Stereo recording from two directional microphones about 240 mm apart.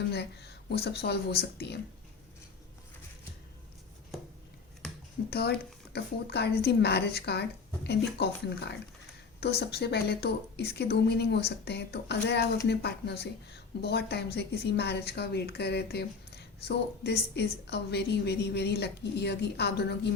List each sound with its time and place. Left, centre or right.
0.1 s speech: left
5.3 s speech: left